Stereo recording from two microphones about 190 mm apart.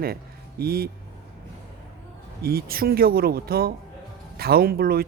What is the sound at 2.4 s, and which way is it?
Speech, 55° right (ahead or behind).